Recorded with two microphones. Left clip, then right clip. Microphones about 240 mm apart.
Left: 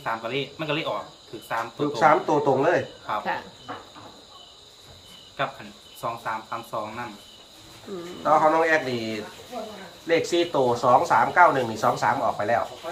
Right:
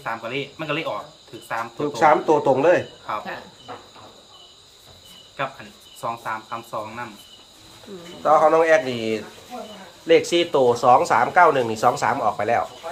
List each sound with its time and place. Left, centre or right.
0.0 s speech: centre
1.9 s speech: right
5.4 s speech: centre
8.2 s speech: right